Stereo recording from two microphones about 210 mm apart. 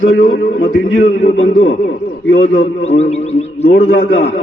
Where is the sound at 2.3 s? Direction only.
65° left (ahead or behind).